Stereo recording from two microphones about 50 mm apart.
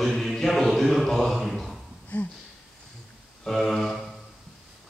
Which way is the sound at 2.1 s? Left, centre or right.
Left.